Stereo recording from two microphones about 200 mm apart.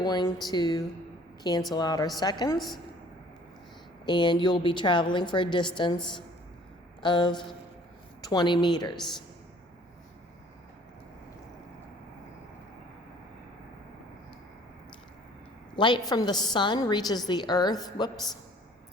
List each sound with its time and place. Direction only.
0.0 s a woman's voice: 20° left (ahead or behind)
4.0 s a woman's voice: 20° left (ahead or behind)
7.0 s a woman's voice: 20° left (ahead or behind)
15.7 s a woman's voice: 20° left (ahead or behind)